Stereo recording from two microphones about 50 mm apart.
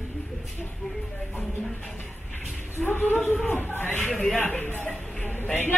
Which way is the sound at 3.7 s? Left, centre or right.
Left.